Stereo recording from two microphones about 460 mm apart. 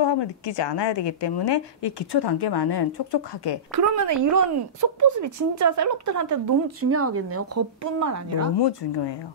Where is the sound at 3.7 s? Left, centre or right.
Right.